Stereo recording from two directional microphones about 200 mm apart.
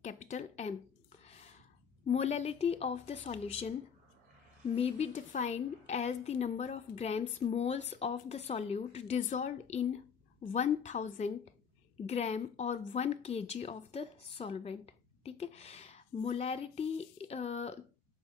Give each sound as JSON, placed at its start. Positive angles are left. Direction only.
{"t": 0.0, "sound": "speech", "side_deg": 35}
{"t": 1.2, "sound": "a sound", "side_deg": 30}
{"t": 2.0, "sound": "a woman's voice", "side_deg": 35}
{"t": 4.7, "sound": "a woman's voice", "side_deg": 30}
{"t": 12.1, "sound": "a woman's voice", "side_deg": 35}